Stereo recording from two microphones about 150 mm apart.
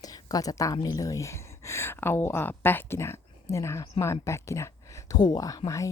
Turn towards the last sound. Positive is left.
turn(degrees=20)  # may be behind; listen again after turning